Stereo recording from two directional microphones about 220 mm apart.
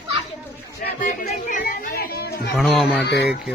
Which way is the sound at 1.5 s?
40° left (ahead or behind).